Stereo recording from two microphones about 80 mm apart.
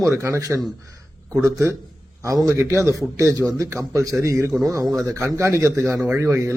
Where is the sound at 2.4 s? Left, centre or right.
Right.